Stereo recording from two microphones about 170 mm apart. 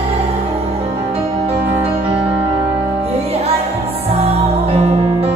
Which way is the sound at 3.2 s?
35° right (ahead or behind).